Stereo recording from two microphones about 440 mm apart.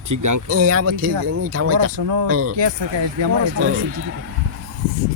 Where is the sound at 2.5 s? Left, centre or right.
Right.